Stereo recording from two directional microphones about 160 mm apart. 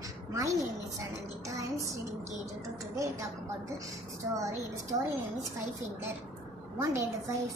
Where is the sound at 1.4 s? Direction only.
20° right (ahead or behind).